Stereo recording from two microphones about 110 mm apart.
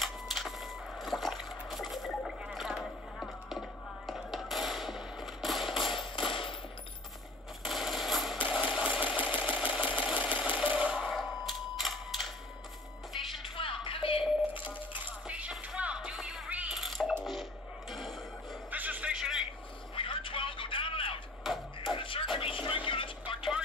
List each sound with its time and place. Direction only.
0.0 s printer: centre (ahead or behind)
3.4 s fireworks: centre (ahead or behind)
5.9 s a sound: 50° left (ahead or behind)
7.6 s a sound: centre (ahead or behind)
8.5 s sewing machine: 10° right (ahead or behind)
13.2 s music: centre (ahead or behind)
13.6 s music: 55° left (ahead or behind)
15.2 s coin: 10° right (ahead or behind)
15.5 s music: 10° right (ahead or behind)
16.7 s cat: centre (ahead or behind)
17.2 s music: centre (ahead or behind)
18.7 s music: 15° right (ahead or behind)
20.0 s a sound: 50° left (ahead or behind)
21.9 s music: 50° left (ahead or behind)